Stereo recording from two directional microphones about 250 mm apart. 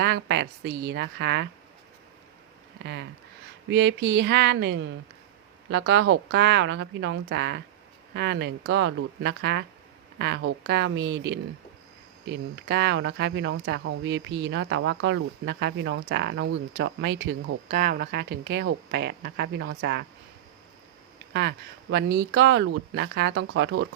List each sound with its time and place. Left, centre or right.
0.0 s speech: right
2.8 s speech: right
21.3 s speech: right